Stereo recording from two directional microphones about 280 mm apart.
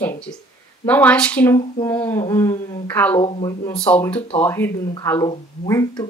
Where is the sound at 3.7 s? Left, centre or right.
Centre.